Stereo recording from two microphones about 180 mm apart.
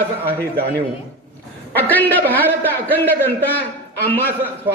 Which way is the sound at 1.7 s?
10° left (ahead or behind).